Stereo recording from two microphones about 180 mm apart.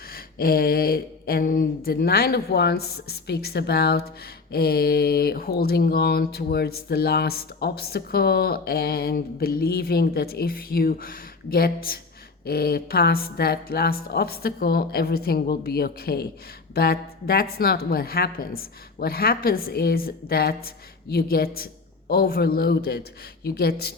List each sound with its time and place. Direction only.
0.1 s speech: 55° left (ahead or behind)